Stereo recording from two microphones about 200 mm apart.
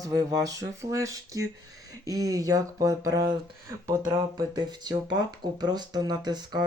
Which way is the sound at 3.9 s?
15° right (ahead or behind).